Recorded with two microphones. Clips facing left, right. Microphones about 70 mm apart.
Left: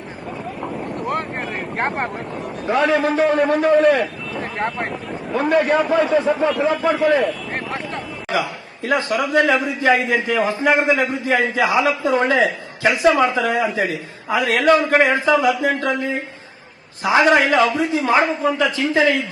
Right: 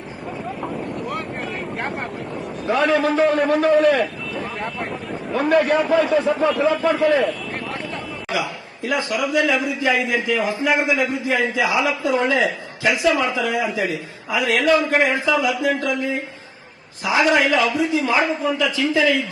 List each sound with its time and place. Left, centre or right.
1.0 s vehicle: left
2.6 s a man's voice: centre
3.7 s a man's voice: centre
4.5 s speech: left
4.9 s a man's voice: centre
6.6 s a man's voice: centre
6.9 s a man's voice: centre
8.3 s a man's voice: left